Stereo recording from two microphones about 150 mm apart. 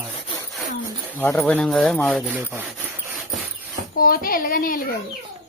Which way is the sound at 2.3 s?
10° right (ahead or behind).